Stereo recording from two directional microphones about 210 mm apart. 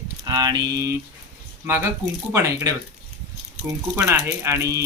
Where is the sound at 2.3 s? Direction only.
15° right (ahead or behind).